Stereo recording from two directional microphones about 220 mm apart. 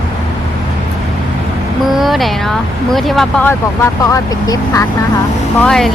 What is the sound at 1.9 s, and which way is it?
Speech, centre (ahead or behind).